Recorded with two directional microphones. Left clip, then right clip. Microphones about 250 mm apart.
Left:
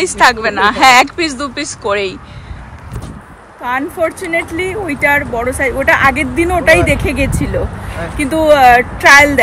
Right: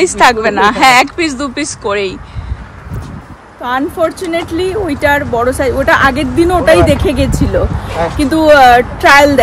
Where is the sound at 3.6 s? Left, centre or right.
Centre.